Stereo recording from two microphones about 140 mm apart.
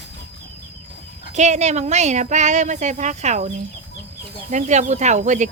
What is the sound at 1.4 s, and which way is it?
Speech, 55° right (ahead or behind).